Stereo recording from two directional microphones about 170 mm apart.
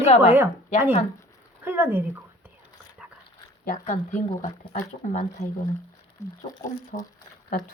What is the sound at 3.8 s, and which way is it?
Speech, 50° left (ahead or behind).